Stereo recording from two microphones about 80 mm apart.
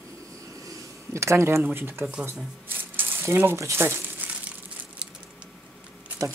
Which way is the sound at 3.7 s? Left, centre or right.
Right.